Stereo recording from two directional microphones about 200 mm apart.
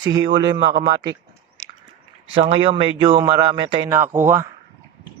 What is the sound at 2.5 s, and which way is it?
Speech, 25° right (ahead or behind).